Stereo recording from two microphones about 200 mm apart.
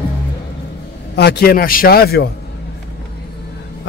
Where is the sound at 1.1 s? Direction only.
55° left (ahead or behind).